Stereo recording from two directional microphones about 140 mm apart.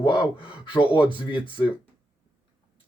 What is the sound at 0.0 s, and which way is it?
Gasp, 35° left (ahead or behind).